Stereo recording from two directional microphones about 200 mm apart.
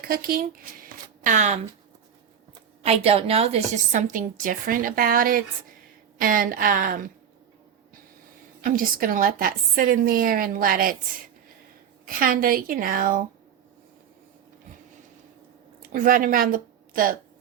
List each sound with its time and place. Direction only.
0.1 s speech: 50° right (ahead or behind)
2.8 s a woman's voice: 30° right (ahead or behind)
8.6 s a woman's voice: 45° right (ahead or behind)
12.0 s a woman's voice: 45° right (ahead or behind)
15.8 s a woman's voice: 45° right (ahead or behind)